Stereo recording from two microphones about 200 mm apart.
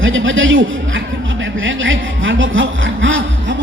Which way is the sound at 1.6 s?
70° right (ahead or behind).